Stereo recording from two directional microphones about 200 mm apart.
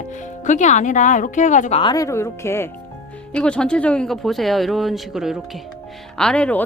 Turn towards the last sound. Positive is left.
turn(degrees=5)  # may be behind; listen again after turning